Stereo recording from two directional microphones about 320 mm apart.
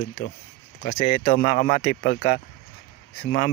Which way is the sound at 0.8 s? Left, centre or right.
Left.